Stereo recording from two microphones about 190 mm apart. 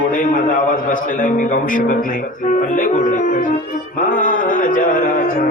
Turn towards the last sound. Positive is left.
turn(degrees=45)  # may be behind; listen again after turning